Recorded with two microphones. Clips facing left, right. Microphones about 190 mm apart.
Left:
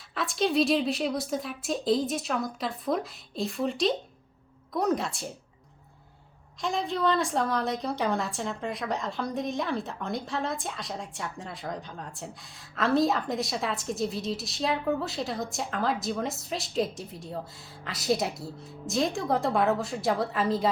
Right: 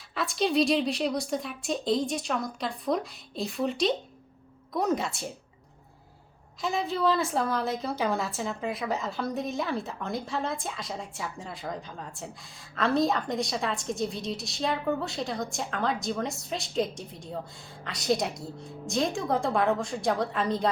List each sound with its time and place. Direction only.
0.1 s a woman's voice: centre (ahead or behind)
6.6 s a woman's voice: 5° right (ahead or behind)